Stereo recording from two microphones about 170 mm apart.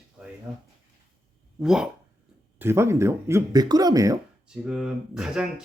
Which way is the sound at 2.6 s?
15° right (ahead or behind).